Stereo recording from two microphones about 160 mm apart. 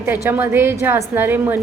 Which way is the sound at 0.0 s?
15° right (ahead or behind).